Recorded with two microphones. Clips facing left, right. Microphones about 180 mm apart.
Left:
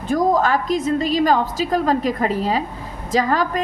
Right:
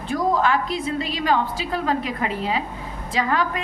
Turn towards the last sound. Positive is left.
turn(degrees=40)  # may be behind; listen again after turning